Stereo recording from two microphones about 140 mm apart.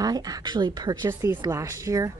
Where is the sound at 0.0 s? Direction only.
25° right (ahead or behind).